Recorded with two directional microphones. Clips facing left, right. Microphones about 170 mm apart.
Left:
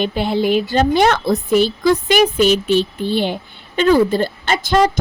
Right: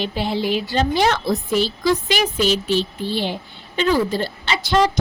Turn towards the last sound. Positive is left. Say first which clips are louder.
# left 3 dB
turn(degrees=50)  # may be behind; listen again after turning